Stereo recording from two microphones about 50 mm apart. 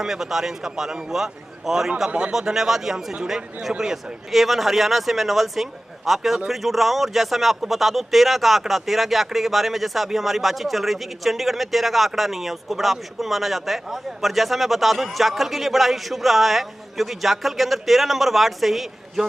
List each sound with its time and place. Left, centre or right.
0.0 s a man's voice: centre
2.0 s a man's voice: right
2.3 s a man's voice: centre